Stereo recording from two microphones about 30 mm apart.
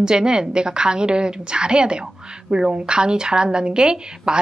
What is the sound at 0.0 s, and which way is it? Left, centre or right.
Speech, right.